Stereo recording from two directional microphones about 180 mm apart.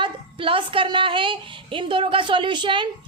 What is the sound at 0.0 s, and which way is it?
A woman's voice, 30° right (ahead or behind).